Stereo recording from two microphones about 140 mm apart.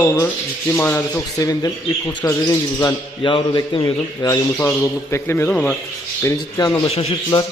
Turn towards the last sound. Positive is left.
turn(degrees=45)  # may be behind; listen again after turning